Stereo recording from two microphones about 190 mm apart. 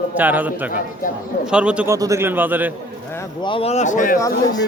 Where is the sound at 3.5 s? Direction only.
30° left (ahead or behind).